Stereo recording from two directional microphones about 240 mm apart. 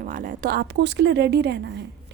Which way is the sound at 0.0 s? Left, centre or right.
Right.